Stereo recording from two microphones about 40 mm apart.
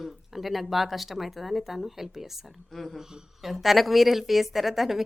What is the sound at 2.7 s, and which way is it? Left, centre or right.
Speech, centre.